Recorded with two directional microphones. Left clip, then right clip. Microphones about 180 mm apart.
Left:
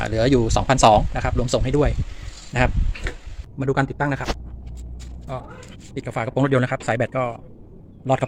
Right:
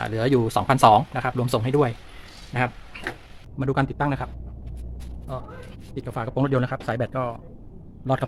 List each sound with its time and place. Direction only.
0.0 s speech: 15° left (ahead or behind)
2.5 s speech: 20° left (ahead or behind)
3.6 s speech: 10° left (ahead or behind)
5.9 s a man's voice: 10° left (ahead or behind)